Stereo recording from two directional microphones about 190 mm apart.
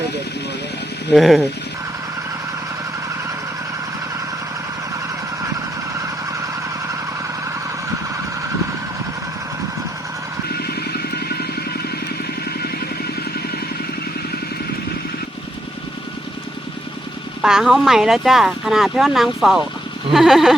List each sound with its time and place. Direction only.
1.1 s speech: centre (ahead or behind)
5.9 s vehicle: 15° right (ahead or behind)
10.5 s vehicle: 55° left (ahead or behind)
17.4 s speech: centre (ahead or behind)